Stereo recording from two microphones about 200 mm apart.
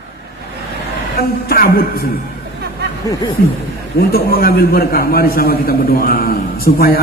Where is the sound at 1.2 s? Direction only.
50° left (ahead or behind).